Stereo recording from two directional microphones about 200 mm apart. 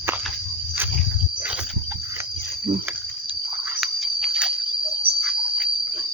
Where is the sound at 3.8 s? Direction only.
Centre (ahead or behind).